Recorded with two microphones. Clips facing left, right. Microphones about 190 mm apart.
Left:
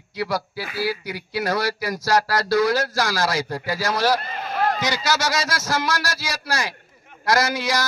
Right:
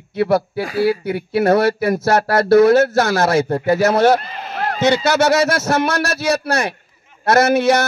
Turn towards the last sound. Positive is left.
turn(degrees=-25)  # may be behind; listen again after turning